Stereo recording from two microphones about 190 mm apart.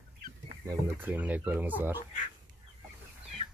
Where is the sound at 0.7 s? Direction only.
10° right (ahead or behind).